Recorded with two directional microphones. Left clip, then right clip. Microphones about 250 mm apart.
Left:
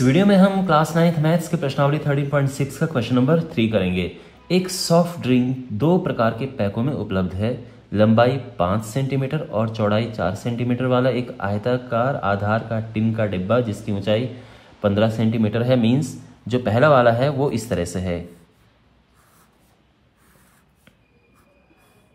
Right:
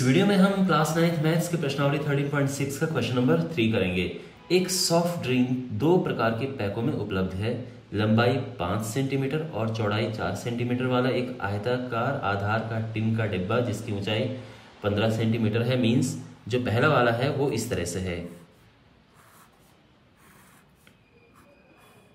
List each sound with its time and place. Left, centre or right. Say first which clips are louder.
0.0 s speech: left 6 dB; centre